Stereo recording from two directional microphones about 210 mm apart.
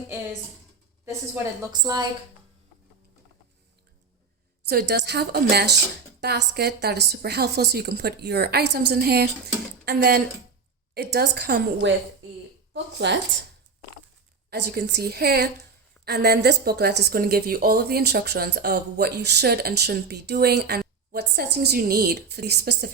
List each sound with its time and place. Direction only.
1.7 s a woman's voice: 20° right (ahead or behind)
4.7 s a woman's voice: 50° right (ahead or behind)
14.7 s a woman's voice: 50° right (ahead or behind)